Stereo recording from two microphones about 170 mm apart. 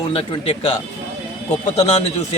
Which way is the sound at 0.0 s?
35° left (ahead or behind).